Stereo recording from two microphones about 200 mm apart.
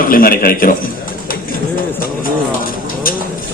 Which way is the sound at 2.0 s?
45° left (ahead or behind).